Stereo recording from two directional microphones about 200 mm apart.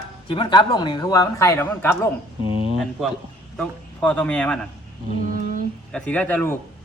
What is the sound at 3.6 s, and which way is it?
Speech, 5° left (ahead or behind).